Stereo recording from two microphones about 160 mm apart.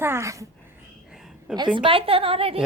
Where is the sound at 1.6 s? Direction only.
30° right (ahead or behind).